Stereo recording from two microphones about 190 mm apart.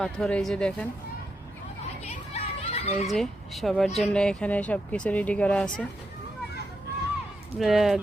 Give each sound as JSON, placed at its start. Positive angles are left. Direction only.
{"t": 0.0, "sound": "speech", "side_deg": 5}
{"t": 2.0, "sound": "children playing", "side_deg": 35}
{"t": 3.1, "sound": "speech", "side_deg": 0}
{"t": 7.6, "sound": "speech", "side_deg": 0}